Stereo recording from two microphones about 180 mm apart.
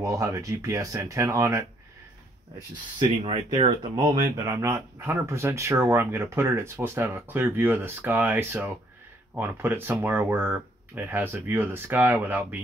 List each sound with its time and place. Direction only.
0.0 s speech: 15° right (ahead or behind)
3.2 s speech: 30° right (ahead or behind); by 12.5 s 10° right (ahead or behind)